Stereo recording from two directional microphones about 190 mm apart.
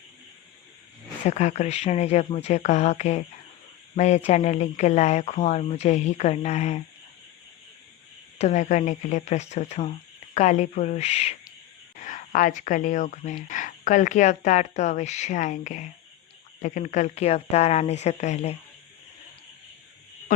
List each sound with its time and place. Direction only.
1.3 s speech: 40° left (ahead or behind)
8.4 s speech: 40° left (ahead or behind)
12.0 s speech: 45° left (ahead or behind)